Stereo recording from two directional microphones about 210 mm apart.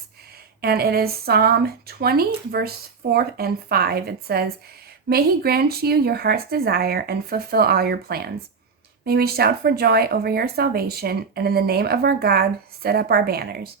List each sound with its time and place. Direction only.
0.6 s speech: 45° right (ahead or behind)